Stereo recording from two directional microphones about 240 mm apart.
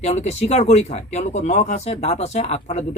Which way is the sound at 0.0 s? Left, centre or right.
Left.